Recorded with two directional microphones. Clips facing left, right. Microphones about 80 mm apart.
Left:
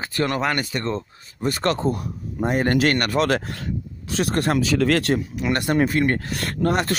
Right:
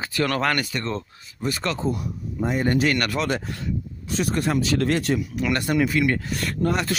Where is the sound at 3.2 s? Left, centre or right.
Left.